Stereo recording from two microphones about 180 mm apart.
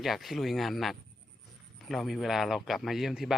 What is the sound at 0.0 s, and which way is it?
Speech, centre (ahead or behind).